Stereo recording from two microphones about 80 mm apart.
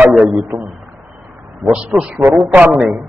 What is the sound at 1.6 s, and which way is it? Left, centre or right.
A man's voice, centre.